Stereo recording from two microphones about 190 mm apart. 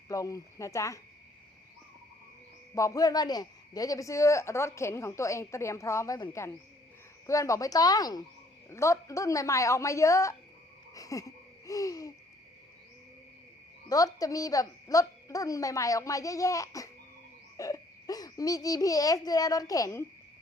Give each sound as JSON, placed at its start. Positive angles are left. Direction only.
{"t": 0.1, "sound": "a man's voice", "side_deg": 15}
{"t": 2.7, "sound": "a man's voice", "side_deg": 15}
{"t": 10.9, "sound": "a sound", "side_deg": 20}
{"t": 13.8, "sound": "a man's voice", "side_deg": 20}